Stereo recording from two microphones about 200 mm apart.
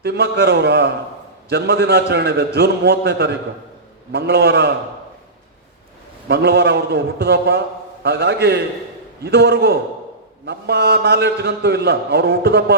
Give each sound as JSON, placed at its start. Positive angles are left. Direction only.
{"t": 0.0, "sound": "a man's voice", "side_deg": -55}
{"t": 6.2, "sound": "a man's voice", "side_deg": -50}